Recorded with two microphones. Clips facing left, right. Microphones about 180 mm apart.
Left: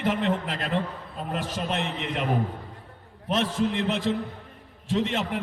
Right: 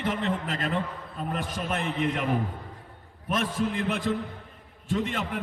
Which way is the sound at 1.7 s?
50° right (ahead or behind).